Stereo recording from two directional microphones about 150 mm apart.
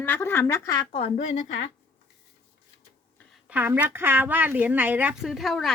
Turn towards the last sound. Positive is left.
turn(degrees=0)  # may be behind; listen again after turning